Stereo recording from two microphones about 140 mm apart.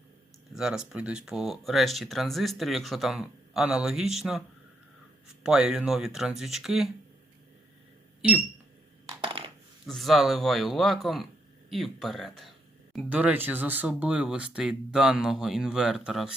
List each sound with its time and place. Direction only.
0.5 s speech: 5° right (ahead or behind)
9.2 s coin: 40° right (ahead or behind)
9.8 s speech: centre (ahead or behind)